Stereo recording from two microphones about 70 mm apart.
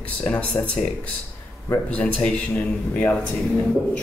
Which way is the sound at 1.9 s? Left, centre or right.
Centre.